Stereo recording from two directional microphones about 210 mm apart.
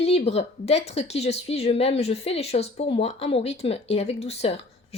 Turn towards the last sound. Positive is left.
turn(degrees=30)  # may be behind; listen again after turning